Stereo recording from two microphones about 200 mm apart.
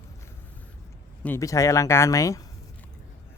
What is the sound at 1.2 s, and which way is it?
Speech, 15° left (ahead or behind).